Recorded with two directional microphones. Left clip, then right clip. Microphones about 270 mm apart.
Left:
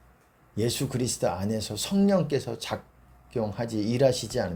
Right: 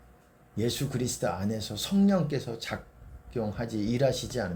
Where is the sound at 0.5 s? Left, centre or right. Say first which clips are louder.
Left 3 dB; left.